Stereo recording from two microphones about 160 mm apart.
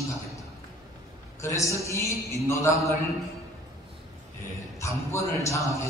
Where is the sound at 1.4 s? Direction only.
20° left (ahead or behind).